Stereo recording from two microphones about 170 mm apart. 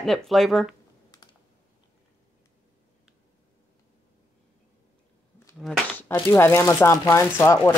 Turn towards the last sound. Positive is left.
turn(degrees=15)  # may be behind; listen again after turning